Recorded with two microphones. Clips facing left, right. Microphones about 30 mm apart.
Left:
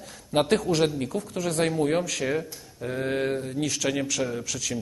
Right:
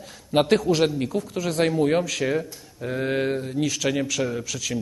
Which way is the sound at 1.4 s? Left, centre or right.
Right.